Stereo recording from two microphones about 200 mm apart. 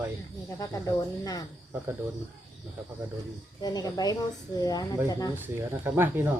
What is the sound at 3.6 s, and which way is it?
Speech, 20° left (ahead or behind).